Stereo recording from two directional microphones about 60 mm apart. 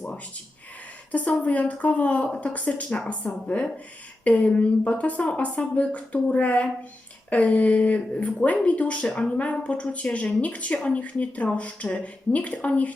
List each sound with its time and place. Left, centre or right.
1.1 s speech: left